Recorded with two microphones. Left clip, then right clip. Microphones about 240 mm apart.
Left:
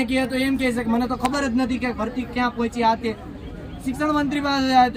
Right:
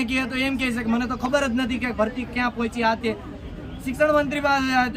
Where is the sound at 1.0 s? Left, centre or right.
Centre.